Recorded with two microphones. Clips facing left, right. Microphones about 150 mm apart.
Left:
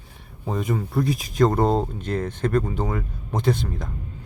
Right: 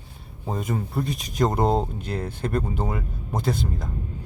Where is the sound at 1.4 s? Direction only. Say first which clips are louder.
Left 2 dB; 10° right (ahead or behind).